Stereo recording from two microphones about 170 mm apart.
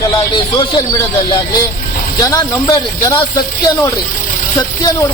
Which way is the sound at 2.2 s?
20° left (ahead or behind).